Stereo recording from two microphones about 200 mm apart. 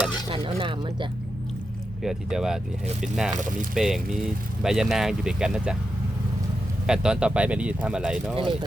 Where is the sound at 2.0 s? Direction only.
Centre (ahead or behind).